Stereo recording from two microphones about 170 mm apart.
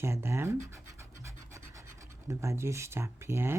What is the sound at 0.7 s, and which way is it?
Scratch, 15° right (ahead or behind).